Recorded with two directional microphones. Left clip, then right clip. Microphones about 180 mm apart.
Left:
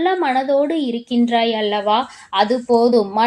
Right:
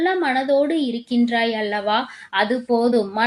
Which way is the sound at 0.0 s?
30° left (ahead or behind).